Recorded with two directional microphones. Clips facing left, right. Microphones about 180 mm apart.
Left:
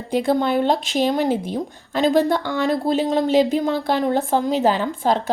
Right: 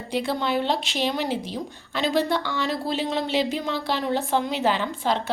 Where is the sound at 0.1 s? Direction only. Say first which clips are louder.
Left 6 dB; 45° left (ahead or behind).